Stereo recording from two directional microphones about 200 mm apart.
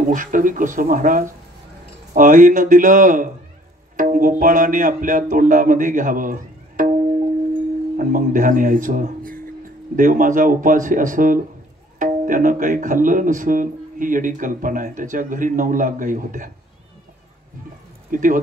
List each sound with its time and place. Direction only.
0.1 s speech: 40° right (ahead or behind)
3.9 s music: 40° right (ahead or behind)
8.0 s speech: 40° right (ahead or behind)
18.1 s speech: 40° right (ahead or behind)